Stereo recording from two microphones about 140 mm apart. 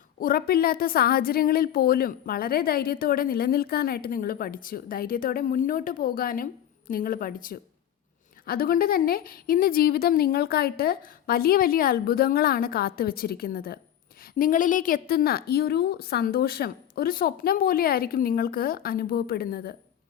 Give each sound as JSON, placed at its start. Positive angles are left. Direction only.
{"t": 0.2, "sound": "a woman's voice", "side_deg": 90}